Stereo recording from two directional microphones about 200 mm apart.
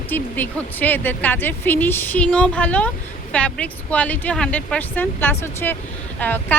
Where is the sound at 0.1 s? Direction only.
10° left (ahead or behind).